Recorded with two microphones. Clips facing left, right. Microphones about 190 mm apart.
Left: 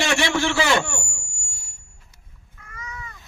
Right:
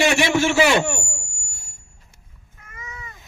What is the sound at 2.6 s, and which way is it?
Cat, 20° right (ahead or behind).